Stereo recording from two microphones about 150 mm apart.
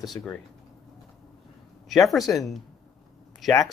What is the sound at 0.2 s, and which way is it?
Speech, 20° left (ahead or behind).